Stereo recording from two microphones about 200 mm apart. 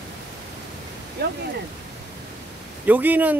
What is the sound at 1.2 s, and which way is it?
Speech, 55° right (ahead or behind).